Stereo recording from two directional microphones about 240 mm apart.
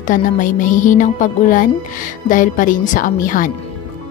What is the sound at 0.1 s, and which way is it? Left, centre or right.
Speech, left.